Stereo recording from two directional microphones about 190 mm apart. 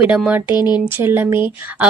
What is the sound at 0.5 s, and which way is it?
Speech, 20° left (ahead or behind).